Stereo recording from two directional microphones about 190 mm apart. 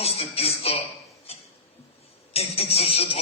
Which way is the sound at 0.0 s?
30° left (ahead or behind).